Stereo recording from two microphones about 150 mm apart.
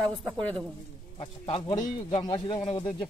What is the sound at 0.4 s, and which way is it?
Speech, 10° left (ahead or behind).